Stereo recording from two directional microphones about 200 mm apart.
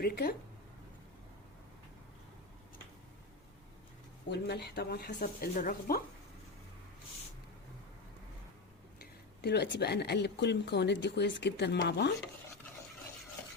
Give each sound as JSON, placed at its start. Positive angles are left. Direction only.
{"t": 0.0, "sound": "a woman's voice", "side_deg": 50}
{"t": 4.3, "sound": "a woman's voice", "side_deg": 55}
{"t": 9.0, "sound": "speech", "side_deg": 55}